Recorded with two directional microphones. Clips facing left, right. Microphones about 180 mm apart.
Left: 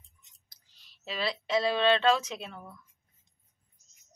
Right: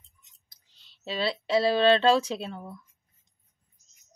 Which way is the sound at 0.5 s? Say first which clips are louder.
Even; 25° right (ahead or behind).